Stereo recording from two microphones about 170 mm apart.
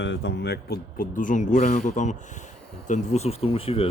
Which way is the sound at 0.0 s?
90° left.